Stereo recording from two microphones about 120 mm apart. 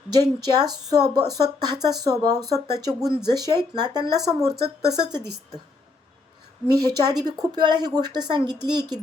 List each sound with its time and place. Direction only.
0.2 s a woman's voice: 35° right (ahead or behind)
6.8 s a woman's voice: 35° right (ahead or behind)